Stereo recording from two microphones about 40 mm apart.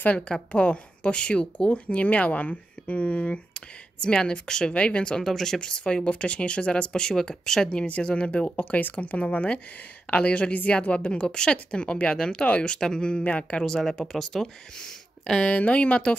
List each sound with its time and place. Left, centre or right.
0.5 s a woman's voice: left
1.7 s speech: left
3.5 s a woman's voice: left
5.6 s a woman's voice: left
7.7 s a woman's voice: left
8.5 s a woman's voice: left
12.4 s speech: left
12.8 s a woman's voice: left
13.2 s speech: left
13.7 s a woman's voice: centre
14.1 s speech: centre
15.5 s speech: left